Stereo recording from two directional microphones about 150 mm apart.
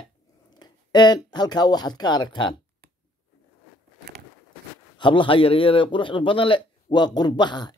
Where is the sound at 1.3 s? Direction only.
25° left (ahead or behind).